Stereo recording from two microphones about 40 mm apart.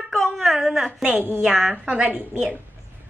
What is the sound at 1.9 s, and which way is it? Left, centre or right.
Speech, right.